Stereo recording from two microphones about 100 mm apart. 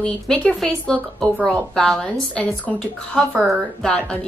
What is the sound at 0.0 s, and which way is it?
A woman's voice, 15° left (ahead or behind).